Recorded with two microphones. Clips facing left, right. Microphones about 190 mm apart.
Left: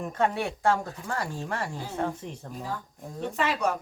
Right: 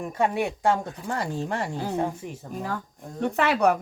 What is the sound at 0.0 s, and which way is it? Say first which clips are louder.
Speech: right 2 dB; 15° right (ahead or behind).